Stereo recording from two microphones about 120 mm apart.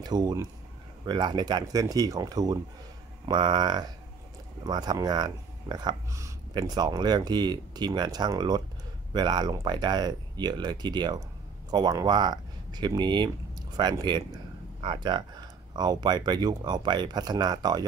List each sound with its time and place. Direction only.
0.0 s speech: 35° right (ahead or behind)